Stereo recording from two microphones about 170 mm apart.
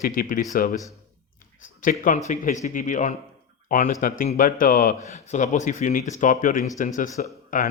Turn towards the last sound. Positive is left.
turn(degrees=55)  # may be behind; listen again after turning